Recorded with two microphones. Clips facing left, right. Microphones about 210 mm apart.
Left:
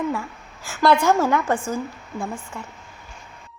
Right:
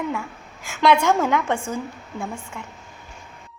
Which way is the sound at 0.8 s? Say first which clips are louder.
Even; 5° left (ahead or behind).